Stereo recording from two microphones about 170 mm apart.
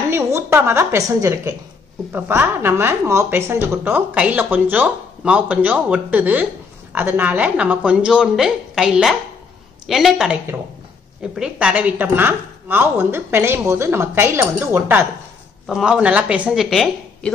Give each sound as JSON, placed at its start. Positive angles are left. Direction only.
{"t": 0.1, "sound": "a woman's voice", "side_deg": -15}